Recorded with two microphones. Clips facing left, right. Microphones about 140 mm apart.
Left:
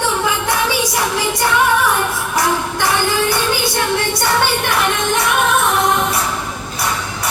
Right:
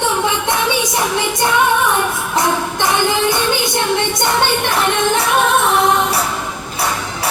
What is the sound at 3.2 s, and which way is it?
Music, 20° right (ahead or behind).